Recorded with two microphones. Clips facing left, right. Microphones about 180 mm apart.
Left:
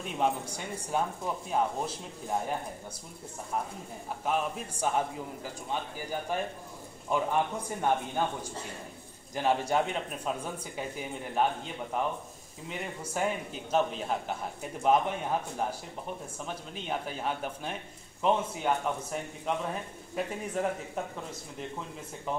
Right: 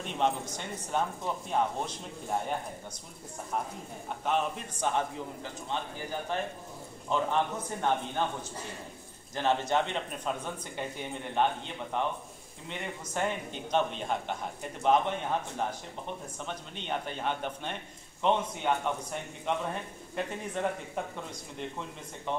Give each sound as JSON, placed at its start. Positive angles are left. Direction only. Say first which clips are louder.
{"t": 0.0, "sound": "speech", "louder": "even", "side_deg": 5}
{"t": 4.2, "sound": "a man's voice", "louder": "right 1 dB", "side_deg": 10}
{"t": 16.4, "sound": "a man's voice", "louder": "left 1 dB", "side_deg": 5}